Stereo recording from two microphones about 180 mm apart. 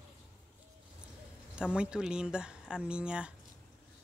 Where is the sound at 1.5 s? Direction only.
5° right (ahead or behind).